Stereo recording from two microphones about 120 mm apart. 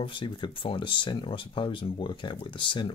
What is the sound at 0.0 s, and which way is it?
Speech, 45° left (ahead or behind).